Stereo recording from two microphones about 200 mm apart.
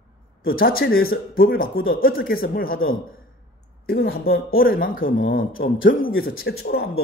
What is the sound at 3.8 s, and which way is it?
Speech, 50° left (ahead or behind).